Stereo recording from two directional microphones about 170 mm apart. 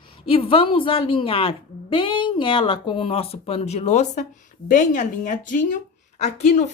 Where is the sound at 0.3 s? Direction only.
30° left (ahead or behind).